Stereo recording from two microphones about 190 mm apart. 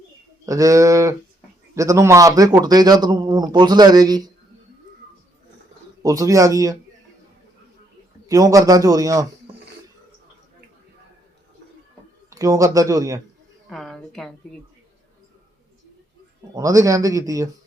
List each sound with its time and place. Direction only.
0.4 s a man's voice: 15° right (ahead or behind)
6.0 s a man's voice: 20° right (ahead or behind)
8.3 s a man's voice: 20° right (ahead or behind)
12.3 s a man's voice: 20° right (ahead or behind)
13.7 s a woman's voice: centre (ahead or behind)
16.6 s a man's voice: 15° right (ahead or behind)